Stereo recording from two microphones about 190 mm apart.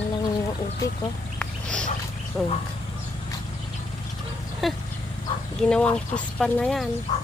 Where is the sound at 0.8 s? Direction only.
15° left (ahead or behind).